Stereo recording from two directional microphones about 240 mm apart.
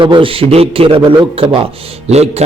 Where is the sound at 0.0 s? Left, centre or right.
Right.